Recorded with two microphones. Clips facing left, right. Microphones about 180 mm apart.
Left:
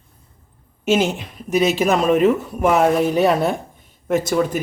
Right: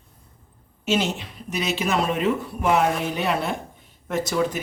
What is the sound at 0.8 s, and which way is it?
Speech, 50° left (ahead or behind).